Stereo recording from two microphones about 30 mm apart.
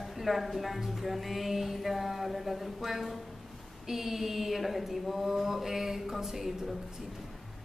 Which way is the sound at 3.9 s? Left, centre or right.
Centre.